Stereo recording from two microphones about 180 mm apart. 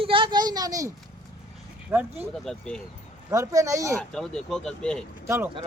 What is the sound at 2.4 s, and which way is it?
Speech, 5° left (ahead or behind).